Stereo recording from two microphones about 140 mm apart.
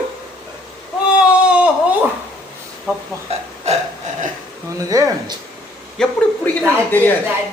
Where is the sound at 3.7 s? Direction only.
50° right (ahead or behind).